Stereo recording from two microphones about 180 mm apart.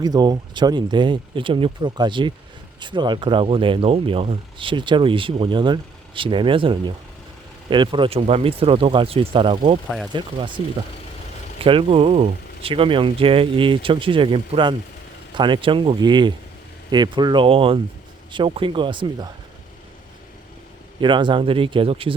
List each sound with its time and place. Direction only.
0.0 s speech: 20° right (ahead or behind)
11.6 s speech: 30° right (ahead or behind)
21.0 s speech: 25° right (ahead or behind)